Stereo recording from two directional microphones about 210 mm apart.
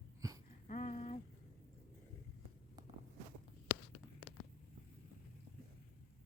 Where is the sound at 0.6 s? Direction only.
35° left (ahead or behind).